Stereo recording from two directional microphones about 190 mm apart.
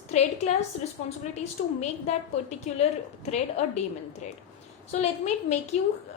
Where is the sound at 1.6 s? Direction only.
40° left (ahead or behind).